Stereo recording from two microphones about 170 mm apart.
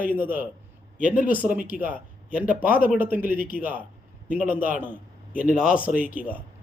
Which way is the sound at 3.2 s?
55° left (ahead or behind).